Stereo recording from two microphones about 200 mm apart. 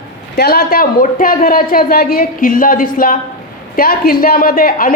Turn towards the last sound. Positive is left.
turn(degrees=45)  # may be behind; listen again after turning